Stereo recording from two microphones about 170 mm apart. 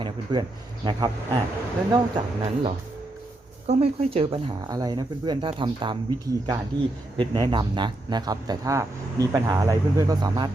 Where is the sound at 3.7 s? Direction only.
35° right (ahead or behind).